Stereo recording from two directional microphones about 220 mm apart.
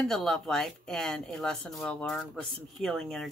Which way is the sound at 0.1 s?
Centre (ahead or behind).